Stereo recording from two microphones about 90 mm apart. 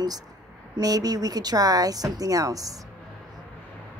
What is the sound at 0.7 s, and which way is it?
A woman's voice, 45° right (ahead or behind).